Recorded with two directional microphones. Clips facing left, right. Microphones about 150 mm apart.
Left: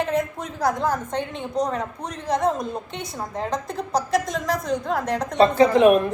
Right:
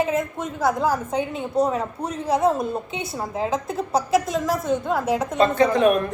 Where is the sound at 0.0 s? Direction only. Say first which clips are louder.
Right 1 dB; centre (ahead or behind).